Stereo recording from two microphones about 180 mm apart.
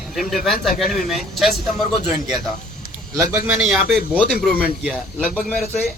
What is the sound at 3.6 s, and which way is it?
Speech, 5° right (ahead or behind).